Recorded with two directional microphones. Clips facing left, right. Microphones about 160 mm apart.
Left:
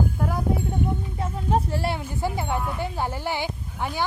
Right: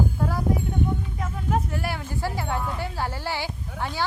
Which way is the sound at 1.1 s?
30° left (ahead or behind).